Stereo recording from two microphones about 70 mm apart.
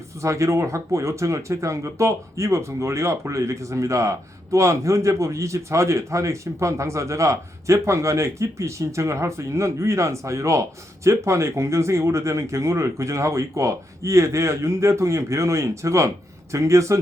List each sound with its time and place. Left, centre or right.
0.2 s speech: right